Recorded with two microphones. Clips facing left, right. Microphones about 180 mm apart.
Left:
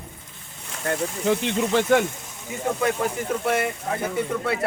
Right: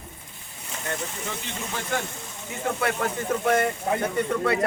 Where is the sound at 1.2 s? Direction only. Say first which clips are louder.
Left 12 dB; 75° left (ahead or behind).